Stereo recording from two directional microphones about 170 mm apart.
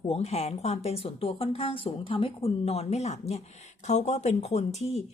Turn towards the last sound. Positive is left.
turn(degrees=40)  # may be behind; listen again after turning